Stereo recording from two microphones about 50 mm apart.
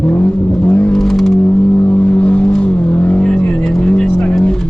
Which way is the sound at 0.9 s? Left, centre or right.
Centre.